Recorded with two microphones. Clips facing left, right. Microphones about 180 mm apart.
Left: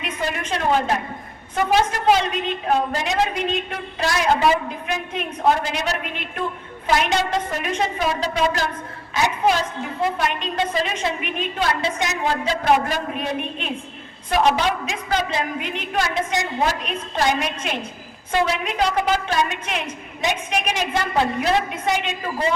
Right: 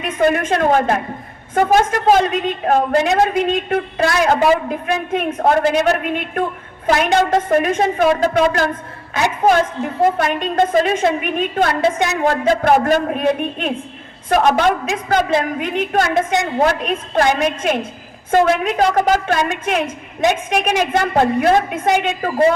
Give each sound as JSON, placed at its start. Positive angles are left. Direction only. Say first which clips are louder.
{"t": 0.0, "sound": "a woman's voice", "louder": "right 10 dB", "side_deg": -50}